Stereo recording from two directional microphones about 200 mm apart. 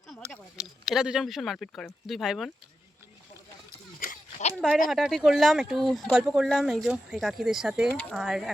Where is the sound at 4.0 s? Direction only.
40° left (ahead or behind).